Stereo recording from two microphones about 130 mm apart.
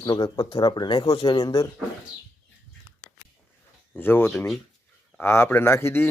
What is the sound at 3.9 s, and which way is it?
A man's voice, 15° left (ahead or behind).